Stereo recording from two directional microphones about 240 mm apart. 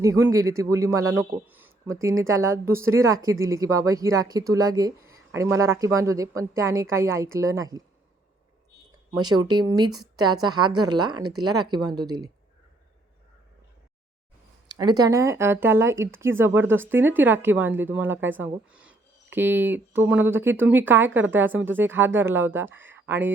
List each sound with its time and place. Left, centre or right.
0.0 s speech: centre
9.1 s speech: centre
11.0 s speech: right
11.7 s speech: centre
14.7 s speech: centre